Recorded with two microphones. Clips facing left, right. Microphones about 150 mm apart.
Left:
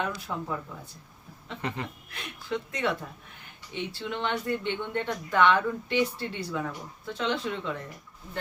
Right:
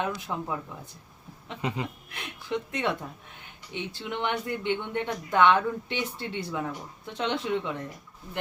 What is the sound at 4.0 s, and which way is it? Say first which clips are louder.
Speech: right 1 dB; 15° right (ahead or behind).